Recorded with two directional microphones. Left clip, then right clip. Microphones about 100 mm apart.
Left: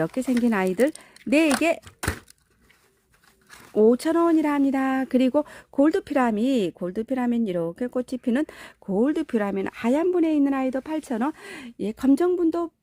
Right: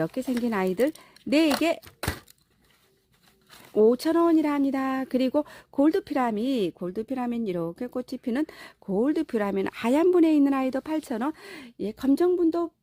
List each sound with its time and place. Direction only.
0.0 s speech: 20° left (ahead or behind)
3.8 s speech: 10° left (ahead or behind)
11.3 s speech: 35° left (ahead or behind)